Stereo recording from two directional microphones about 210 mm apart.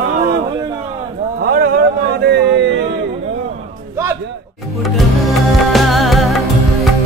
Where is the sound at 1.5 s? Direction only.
45° right (ahead or behind).